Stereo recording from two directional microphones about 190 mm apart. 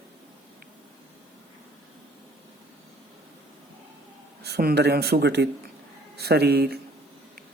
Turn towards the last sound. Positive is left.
turn(degrees=-55)  # may be behind; listen again after turning